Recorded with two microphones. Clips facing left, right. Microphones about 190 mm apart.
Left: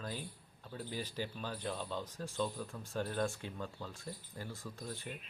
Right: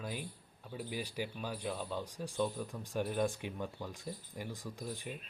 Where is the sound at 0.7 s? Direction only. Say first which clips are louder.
Right 2 dB; 10° right (ahead or behind).